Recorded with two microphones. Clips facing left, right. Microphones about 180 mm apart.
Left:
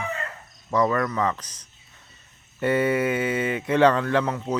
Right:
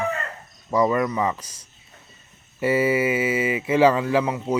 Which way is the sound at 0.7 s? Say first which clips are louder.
Right 2 dB; 10° right (ahead or behind).